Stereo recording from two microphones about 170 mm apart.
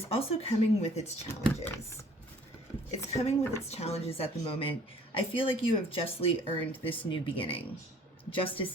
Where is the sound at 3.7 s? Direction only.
35° left (ahead or behind).